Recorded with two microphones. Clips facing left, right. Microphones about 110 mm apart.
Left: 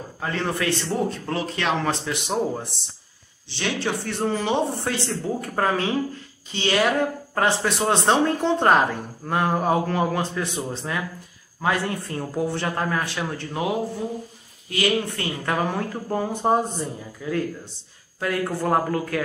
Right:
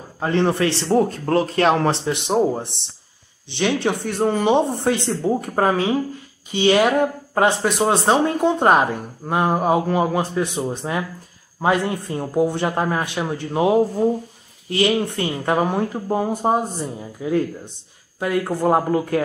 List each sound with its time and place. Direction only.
0.2 s speech: 25° right (ahead or behind)
0.9 s a man's voice: 45° right (ahead or behind)
1.9 s speech: 25° right (ahead or behind)
7.8 s speech: 5° right (ahead or behind)
13.6 s speech: 35° right (ahead or behind); by 16.6 s 10° right (ahead or behind)
17.2 s speech: 20° right (ahead or behind)